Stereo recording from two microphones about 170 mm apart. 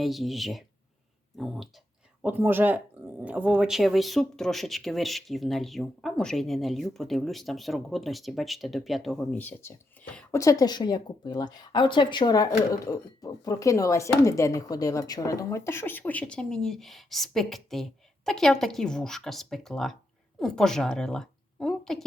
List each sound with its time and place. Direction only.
0.0 s a woman's voice: centre (ahead or behind)